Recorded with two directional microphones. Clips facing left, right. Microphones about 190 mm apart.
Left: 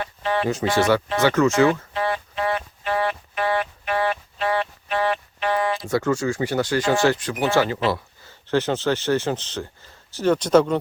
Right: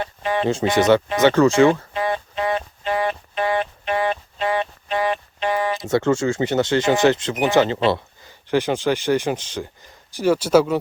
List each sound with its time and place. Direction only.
0.0 s speech: 20° right (ahead or behind)
1.3 s speech: 30° right (ahead or behind)
2.0 s a sound: 20° right (ahead or behind)
8.4 s speech: 15° right (ahead or behind)